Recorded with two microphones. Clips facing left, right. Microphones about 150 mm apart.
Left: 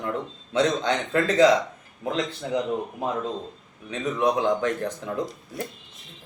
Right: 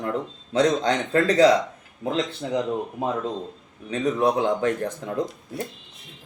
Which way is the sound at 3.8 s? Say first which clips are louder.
Right 2 dB; 35° right (ahead or behind).